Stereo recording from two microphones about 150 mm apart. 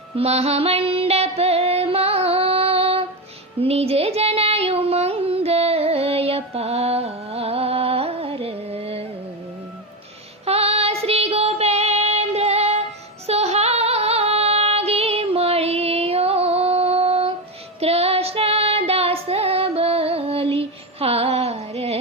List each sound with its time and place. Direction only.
0.2 s music: 45° right (ahead or behind)
3.6 s child singing: 40° right (ahead or behind)
10.4 s child singing: 40° right (ahead or behind)
13.2 s female singing: 45° right (ahead or behind)
17.7 s child singing: 45° right (ahead or behind)